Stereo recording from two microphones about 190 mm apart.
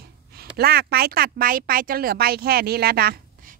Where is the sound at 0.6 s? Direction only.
55° right (ahead or behind).